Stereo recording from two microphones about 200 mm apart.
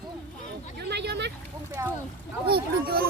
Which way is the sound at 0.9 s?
60° right (ahead or behind).